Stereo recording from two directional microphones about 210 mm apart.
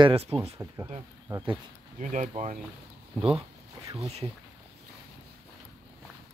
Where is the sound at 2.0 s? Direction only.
35° right (ahead or behind).